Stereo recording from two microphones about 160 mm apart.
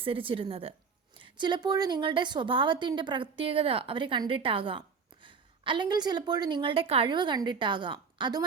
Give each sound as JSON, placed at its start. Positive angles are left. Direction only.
{"t": 0.0, "sound": "a woman's voice", "side_deg": -35}